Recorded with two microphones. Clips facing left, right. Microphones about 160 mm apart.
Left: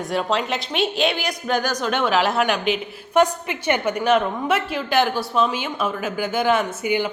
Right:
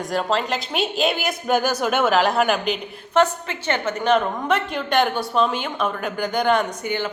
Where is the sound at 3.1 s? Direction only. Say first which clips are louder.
Left 1 dB; 10° left (ahead or behind).